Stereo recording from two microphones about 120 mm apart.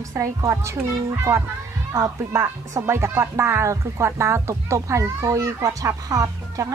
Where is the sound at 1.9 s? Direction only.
25° right (ahead or behind).